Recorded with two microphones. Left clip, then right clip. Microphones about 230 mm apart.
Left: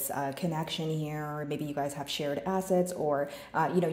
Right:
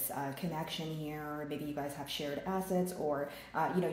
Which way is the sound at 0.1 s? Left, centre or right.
Left.